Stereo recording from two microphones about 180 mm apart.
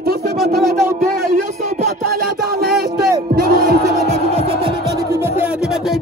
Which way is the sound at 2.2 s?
60° right (ahead or behind).